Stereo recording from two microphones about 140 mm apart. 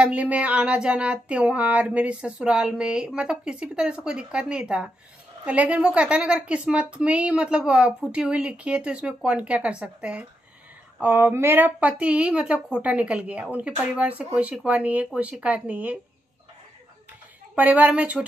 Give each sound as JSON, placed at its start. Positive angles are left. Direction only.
{"t": 0.0, "sound": "a woman's voice", "side_deg": -10}
{"t": 17.6, "sound": "a woman's voice", "side_deg": -10}